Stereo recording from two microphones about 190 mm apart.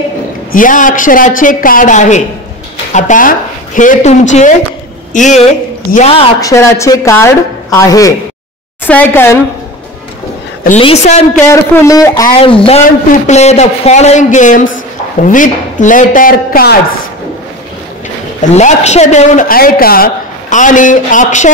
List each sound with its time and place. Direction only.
0.5 s a woman's voice: 45° left (ahead or behind)
6.4 s speech: 15° left (ahead or behind)
10.8 s speech: 30° left (ahead or behind)
11.3 s speech: 15° left (ahead or behind)
12.4 s a woman's voice: 30° left (ahead or behind); by 16.7 s 50° left (ahead or behind)
18.4 s speech: 35° left (ahead or behind)